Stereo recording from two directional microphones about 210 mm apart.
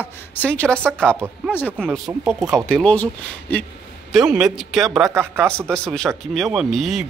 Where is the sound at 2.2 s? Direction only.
10° right (ahead or behind).